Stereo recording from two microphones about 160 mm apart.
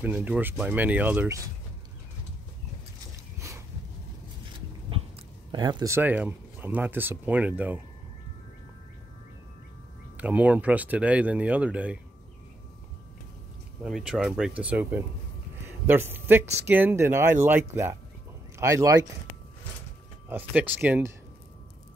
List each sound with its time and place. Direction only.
0.0 s speech: 10° right (ahead or behind)
3.3 s a sound: 20° right (ahead or behind)
5.5 s speech: 25° right (ahead or behind)
5.9 s speech: 10° right (ahead or behind)
10.1 s speech: 10° right (ahead or behind)
13.8 s speech: centre (ahead or behind); by 19.0 s 20° right (ahead or behind)
20.2 s speech: 10° right (ahead or behind)